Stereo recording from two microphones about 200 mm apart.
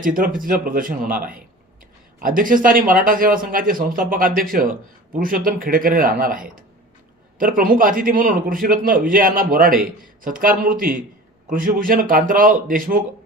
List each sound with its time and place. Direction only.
0.0 s a man's voice: 45° right (ahead or behind)